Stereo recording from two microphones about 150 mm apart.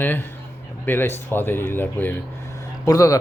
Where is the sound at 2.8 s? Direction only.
25° left (ahead or behind).